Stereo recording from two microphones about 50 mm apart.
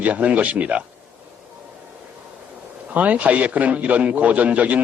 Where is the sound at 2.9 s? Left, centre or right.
Right.